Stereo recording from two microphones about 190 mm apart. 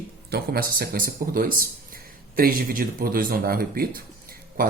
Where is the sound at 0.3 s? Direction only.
55° right (ahead or behind).